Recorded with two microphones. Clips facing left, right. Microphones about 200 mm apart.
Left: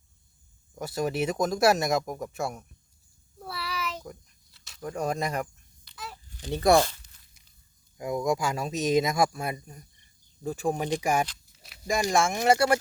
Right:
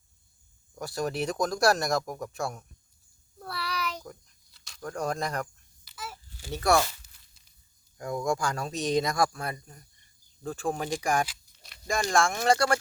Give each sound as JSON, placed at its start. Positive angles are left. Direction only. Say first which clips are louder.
{"t": 0.9, "sound": "speech", "louder": "left 2 dB", "side_deg": 5}
{"t": 3.3, "sound": "a sound", "louder": "even", "side_deg": 5}
{"t": 6.4, "sound": "speech", "louder": "left 4 dB", "side_deg": 15}
{"t": 7.9, "sound": "speech", "louder": "left 2 dB", "side_deg": 15}
{"t": 8.6, "sound": "speech", "louder": "left 3 dB", "side_deg": 5}
{"t": 9.0, "sound": "speech", "louder": "left 2 dB", "side_deg": 20}
{"t": 9.3, "sound": "speech", "louder": "left 3 dB", "side_deg": 10}
{"t": 11.5, "sound": "speech", "louder": "left 2 dB", "side_deg": 5}
{"t": 12.2, "sound": "speech", "louder": "left 3 dB", "side_deg": 15}